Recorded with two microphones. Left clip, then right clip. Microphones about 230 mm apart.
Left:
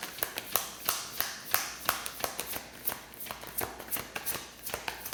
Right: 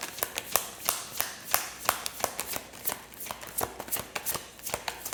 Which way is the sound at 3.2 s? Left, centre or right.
Right.